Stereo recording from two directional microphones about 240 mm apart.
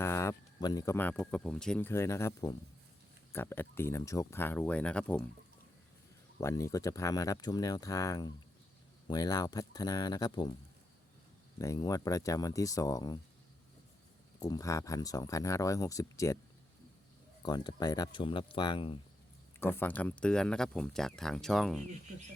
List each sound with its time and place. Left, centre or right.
0.0 s speech: centre
6.4 s speech: centre
11.6 s speech: centre
14.3 s speech: centre
17.4 s speech: centre
19.5 s speech: centre